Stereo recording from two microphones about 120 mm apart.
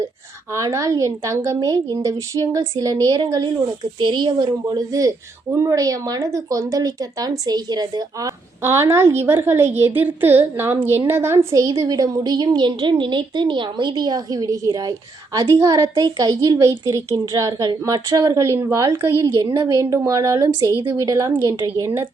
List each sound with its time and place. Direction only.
0.5 s a woman's voice: 25° right (ahead or behind)
4.6 s a woman's voice: 30° right (ahead or behind)
8.6 s a woman's voice: 20° right (ahead or behind)